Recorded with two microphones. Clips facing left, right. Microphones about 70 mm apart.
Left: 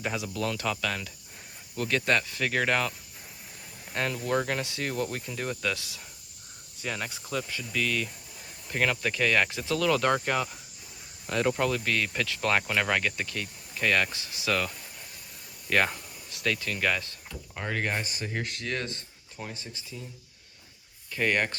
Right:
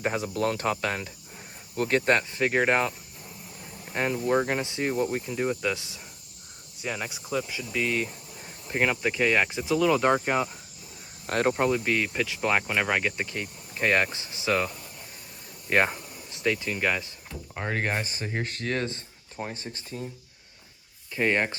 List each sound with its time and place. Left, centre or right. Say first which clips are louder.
0.0 s speech: right 4 dB; right
3.9 s speech: right 3 dB; right
6.8 s speech: right 2 dB; centre
11.3 s speech: right 2 dB; right
11.5 s speech: right 3 dB; right
15.7 s speech: right 2 dB; right
17.7 s speech: right 1 dB; right
21.1 s speech: right 2 dB; right